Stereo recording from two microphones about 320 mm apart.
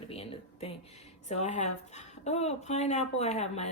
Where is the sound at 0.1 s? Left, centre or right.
Centre.